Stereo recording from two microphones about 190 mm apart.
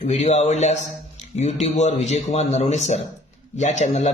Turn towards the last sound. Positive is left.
turn(degrees=35)  # may be behind; listen again after turning